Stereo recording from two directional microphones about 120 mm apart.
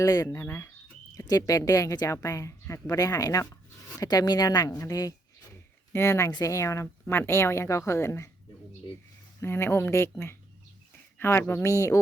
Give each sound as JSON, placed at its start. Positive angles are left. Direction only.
{"t": 0.0, "sound": "speech", "side_deg": 25}
{"t": 9.4, "sound": "speech", "side_deg": 20}